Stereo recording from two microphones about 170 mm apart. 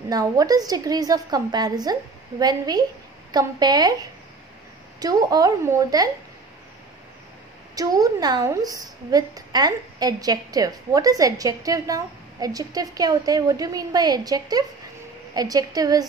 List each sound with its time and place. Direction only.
0.1 s a woman's voice: 20° right (ahead or behind)
5.0 s a woman's voice: 20° right (ahead or behind)
7.7 s a woman's voice: 20° right (ahead or behind)